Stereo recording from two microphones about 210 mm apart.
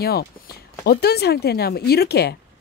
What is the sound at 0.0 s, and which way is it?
Speech, 45° left (ahead or behind).